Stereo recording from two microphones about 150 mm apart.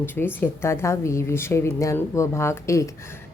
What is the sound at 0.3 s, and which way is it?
A woman's voice, 15° left (ahead or behind).